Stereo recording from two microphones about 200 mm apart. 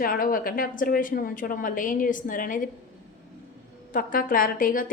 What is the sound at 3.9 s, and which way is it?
Speech, 45° left (ahead or behind).